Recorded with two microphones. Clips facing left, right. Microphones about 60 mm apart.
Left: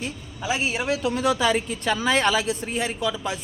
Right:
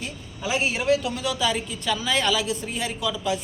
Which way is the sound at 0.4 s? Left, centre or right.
Centre.